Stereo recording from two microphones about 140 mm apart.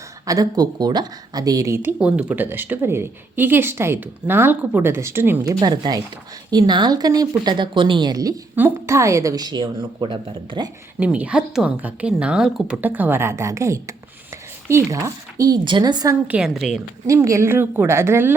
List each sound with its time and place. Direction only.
0.3 s a woman's voice: 25° right (ahead or behind)
11.0 s a woman's voice: 10° right (ahead or behind); by 16.1 s 30° right (ahead or behind)
16.2 s a woman's voice: 5° right (ahead or behind)
17.1 s speech: 20° right (ahead or behind)